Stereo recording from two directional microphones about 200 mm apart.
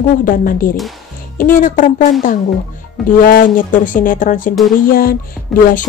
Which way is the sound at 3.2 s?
45° left (ahead or behind).